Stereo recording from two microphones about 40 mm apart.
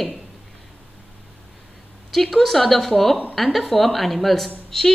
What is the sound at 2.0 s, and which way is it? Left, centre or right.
A woman's voice, centre.